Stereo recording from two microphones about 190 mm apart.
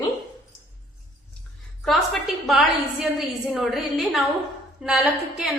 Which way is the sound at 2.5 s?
Centre (ahead or behind).